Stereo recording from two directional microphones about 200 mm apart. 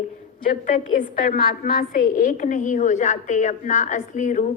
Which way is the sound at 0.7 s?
40° left (ahead or behind).